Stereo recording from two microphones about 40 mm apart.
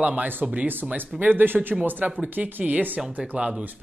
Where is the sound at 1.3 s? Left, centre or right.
Right.